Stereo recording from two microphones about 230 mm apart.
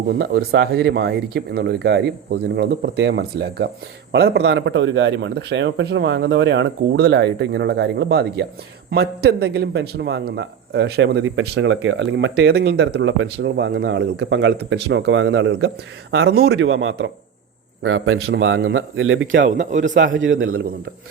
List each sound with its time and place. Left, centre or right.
0.2 s a man's voice: right
19.7 s a man's voice: right
20.1 s a man's voice: right